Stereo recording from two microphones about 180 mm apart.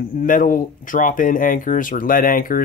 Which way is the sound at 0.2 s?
50° left (ahead or behind).